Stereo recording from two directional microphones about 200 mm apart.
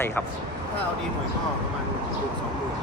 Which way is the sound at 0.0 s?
10° left (ahead or behind).